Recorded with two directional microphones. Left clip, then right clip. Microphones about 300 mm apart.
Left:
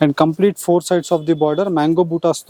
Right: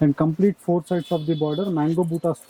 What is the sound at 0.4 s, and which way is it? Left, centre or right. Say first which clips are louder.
Speech: left 7 dB; left.